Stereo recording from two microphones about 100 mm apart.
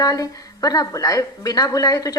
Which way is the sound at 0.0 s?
35° left (ahead or behind).